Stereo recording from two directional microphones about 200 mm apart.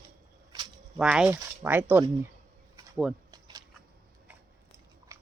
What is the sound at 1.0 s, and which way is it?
Speech, 5° right (ahead or behind).